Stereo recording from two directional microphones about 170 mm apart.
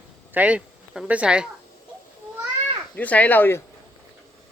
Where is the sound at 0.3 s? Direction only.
5° right (ahead or behind).